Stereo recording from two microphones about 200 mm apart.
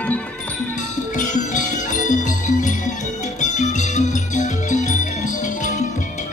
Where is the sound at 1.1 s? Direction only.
40° left (ahead or behind).